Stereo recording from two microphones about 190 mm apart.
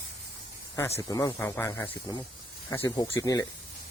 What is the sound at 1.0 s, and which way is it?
Speech, 20° left (ahead or behind).